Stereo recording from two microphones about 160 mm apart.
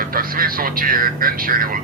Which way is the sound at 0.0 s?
65° right (ahead or behind).